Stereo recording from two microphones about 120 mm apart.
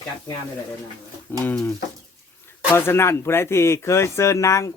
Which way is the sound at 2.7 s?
20° left (ahead or behind).